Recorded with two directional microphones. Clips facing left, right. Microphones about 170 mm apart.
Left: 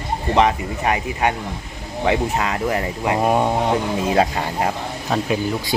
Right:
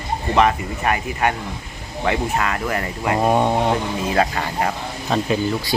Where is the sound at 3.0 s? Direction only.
5° left (ahead or behind).